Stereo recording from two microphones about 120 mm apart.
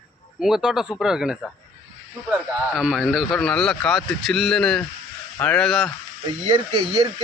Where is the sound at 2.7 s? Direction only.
5° right (ahead or behind).